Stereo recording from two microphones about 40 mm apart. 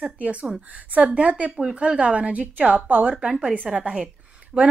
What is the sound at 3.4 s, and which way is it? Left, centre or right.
Speech, right.